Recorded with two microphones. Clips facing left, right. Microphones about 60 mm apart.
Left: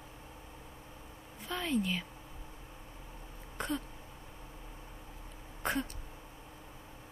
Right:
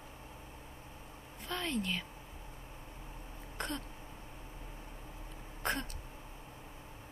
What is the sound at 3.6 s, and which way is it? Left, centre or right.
Throat clearing, centre.